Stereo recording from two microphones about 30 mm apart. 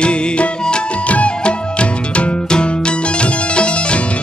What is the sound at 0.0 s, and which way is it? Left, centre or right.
Music, left.